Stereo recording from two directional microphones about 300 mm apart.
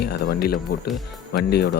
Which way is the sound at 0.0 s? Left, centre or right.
Left.